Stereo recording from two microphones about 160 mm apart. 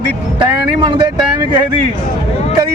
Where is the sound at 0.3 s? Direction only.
30° right (ahead or behind).